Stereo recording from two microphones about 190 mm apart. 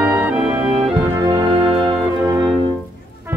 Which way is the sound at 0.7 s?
30° right (ahead or behind).